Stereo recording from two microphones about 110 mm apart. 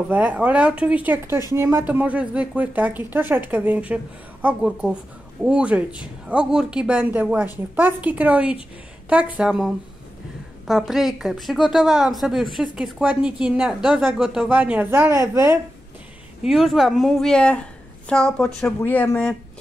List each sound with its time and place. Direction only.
0.1 s speech: 15° right (ahead or behind)
10.7 s a woman's voice: centre (ahead or behind); by 15.6 s 25° right (ahead or behind)
16.4 s speech: 5° right (ahead or behind)
18.8 s speech: 20° left (ahead or behind)